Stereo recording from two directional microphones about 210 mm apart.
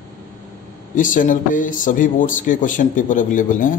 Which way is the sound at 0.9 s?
40° left (ahead or behind).